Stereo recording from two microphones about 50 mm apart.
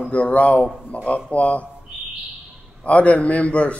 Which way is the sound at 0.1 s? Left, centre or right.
Left.